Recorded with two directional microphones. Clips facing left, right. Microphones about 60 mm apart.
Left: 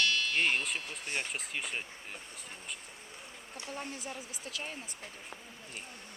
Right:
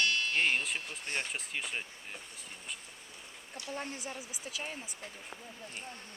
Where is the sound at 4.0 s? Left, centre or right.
Centre.